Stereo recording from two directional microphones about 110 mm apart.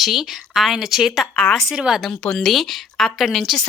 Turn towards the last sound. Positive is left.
turn(degrees=0)  # may be behind; listen again after turning